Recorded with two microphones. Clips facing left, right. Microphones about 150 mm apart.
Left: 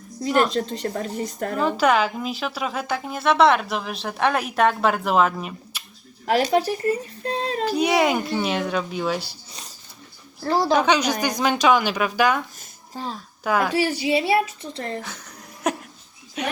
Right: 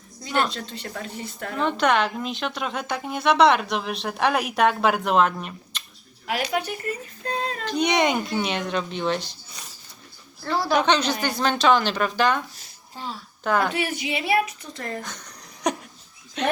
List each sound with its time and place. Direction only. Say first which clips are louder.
0.5 s speech: left 9 dB; 40° left (ahead or behind)
1.5 s a woman's voice: left 2 dB; 5° left (ahead or behind)
6.2 s speech: left 7 dB; 40° left (ahead or behind)
7.6 s a woman's voice: left 2 dB; 5° left (ahead or behind)
10.8 s a woman's voice: left 1 dB; 10° left (ahead or behind)
12.5 s a sound: left 5 dB; 40° left (ahead or behind)
13.4 s a woman's voice: left 1 dB; 5° left (ahead or behind)
14.0 s a woman's voice: left 1 dB; 30° left (ahead or behind)
15.0 s a sound: left 1 dB; 5° left (ahead or behind)
16.4 s a woman's voice: right 4 dB; 10° left (ahead or behind)